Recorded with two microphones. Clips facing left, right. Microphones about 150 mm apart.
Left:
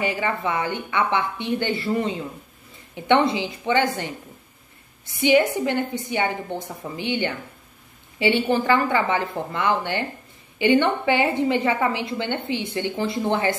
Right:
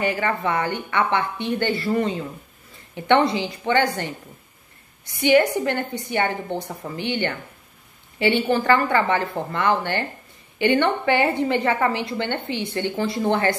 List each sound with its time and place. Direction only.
0.0 s a woman's voice: 15° left (ahead or behind)
5.2 s a woman's voice: 15° left (ahead or behind)